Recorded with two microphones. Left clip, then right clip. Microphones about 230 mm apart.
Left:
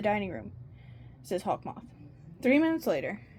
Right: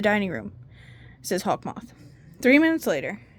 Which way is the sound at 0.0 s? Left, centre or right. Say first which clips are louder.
Right 6 dB; right.